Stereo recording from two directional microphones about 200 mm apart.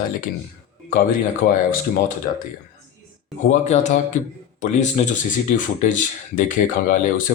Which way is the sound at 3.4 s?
40° left (ahead or behind).